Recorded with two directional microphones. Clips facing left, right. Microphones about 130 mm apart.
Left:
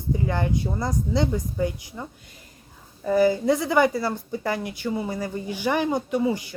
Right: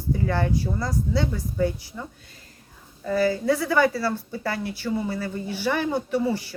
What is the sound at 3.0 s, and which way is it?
A woman's voice, 15° left (ahead or behind).